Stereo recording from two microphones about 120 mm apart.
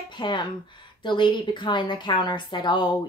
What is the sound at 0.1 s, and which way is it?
A woman's voice, 40° left (ahead or behind).